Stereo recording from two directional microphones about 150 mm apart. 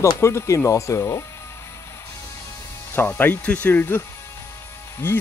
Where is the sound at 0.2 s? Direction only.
20° left (ahead or behind).